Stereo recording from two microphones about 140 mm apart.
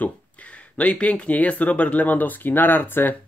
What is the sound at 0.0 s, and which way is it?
Speech, 10° left (ahead or behind).